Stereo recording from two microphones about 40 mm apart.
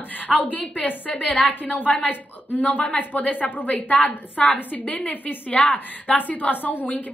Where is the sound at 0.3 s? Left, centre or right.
Left.